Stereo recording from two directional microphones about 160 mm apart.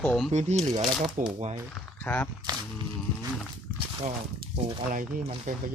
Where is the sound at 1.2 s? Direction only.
55° right (ahead or behind).